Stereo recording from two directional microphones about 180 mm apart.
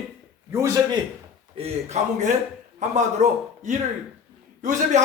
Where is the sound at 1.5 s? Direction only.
35° right (ahead or behind).